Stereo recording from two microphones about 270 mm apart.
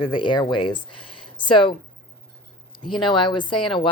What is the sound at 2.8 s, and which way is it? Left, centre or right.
Speech, centre.